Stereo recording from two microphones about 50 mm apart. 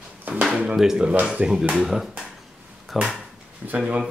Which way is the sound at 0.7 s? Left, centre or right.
Centre.